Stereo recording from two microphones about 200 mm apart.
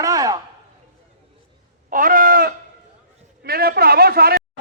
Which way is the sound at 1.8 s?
45° right (ahead or behind).